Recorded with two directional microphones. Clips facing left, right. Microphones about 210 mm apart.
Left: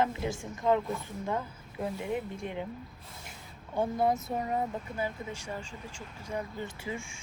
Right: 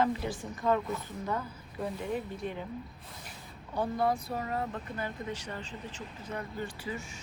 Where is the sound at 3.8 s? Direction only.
20° left (ahead or behind).